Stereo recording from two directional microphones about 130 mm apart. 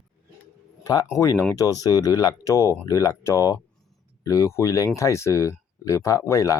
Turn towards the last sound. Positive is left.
turn(degrees=25)  # may be behind; listen again after turning